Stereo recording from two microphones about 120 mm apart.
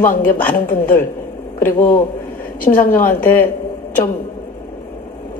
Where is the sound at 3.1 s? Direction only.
15° left (ahead or behind).